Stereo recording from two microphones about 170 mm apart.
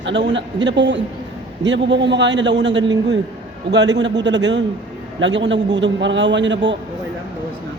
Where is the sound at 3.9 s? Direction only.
90° right.